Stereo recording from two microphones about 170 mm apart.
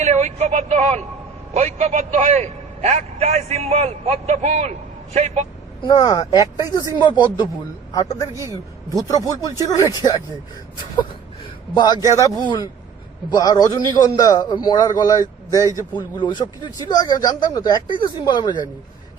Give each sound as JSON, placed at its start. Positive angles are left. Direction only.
{"t": 0.0, "sound": "a man's voice", "side_deg": -40}
{"t": 5.9, "sound": "a man's voice", "side_deg": 25}
{"t": 8.3, "sound": "a man's voice", "side_deg": -15}
{"t": 9.0, "sound": "a man's voice", "side_deg": 20}
{"t": 11.7, "sound": "a man's voice", "side_deg": 25}